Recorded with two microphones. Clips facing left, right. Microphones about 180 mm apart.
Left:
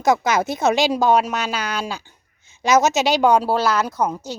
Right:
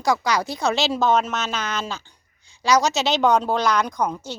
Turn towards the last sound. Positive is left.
turn(degrees=10)  # may be behind; listen again after turning